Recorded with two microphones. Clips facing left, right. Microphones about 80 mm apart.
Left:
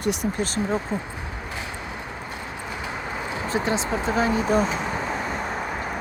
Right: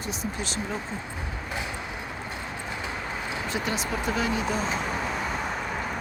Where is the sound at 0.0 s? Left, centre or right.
Left.